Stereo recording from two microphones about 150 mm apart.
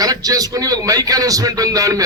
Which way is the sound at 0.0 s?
25° right (ahead or behind).